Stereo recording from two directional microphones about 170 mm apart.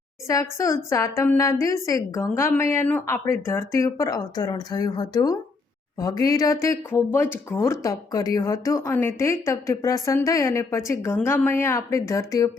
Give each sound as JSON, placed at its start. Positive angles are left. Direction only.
{"t": 0.3, "sound": "speech", "side_deg": 20}